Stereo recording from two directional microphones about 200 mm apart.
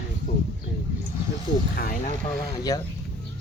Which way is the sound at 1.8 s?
45° left (ahead or behind).